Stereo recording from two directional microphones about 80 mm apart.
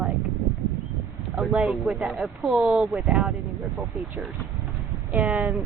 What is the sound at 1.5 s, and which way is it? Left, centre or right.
Speech, centre.